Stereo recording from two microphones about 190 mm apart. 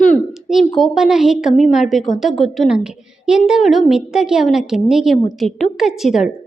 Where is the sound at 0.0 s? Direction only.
Centre (ahead or behind).